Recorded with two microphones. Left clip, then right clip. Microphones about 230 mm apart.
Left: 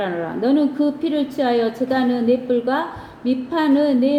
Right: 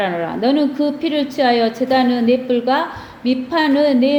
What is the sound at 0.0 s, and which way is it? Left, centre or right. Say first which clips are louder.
A woman's voice: right 4 dB; right.